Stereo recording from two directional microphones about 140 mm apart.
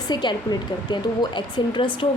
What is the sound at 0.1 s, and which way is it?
Speech, 30° left (ahead or behind).